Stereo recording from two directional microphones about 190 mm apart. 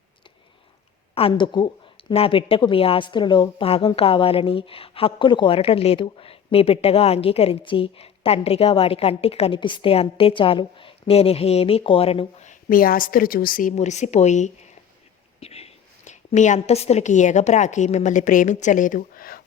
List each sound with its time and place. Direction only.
1.1 s a woman's voice: 25° left (ahead or behind); by 19.4 s 50° left (ahead or behind)